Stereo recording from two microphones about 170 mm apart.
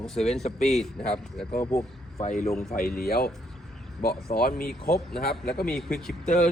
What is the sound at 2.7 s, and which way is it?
Speech, 65° left (ahead or behind).